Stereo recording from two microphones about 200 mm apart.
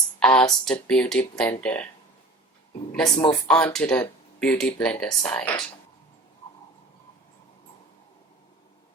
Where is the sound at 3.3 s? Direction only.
5° left (ahead or behind).